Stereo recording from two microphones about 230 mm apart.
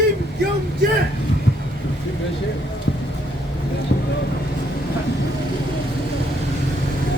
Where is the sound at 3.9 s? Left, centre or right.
Left.